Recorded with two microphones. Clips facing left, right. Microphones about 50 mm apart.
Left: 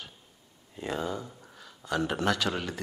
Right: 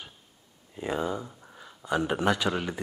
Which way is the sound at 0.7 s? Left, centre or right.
Centre.